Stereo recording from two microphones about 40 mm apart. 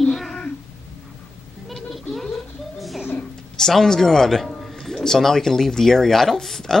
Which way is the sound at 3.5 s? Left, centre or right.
Centre.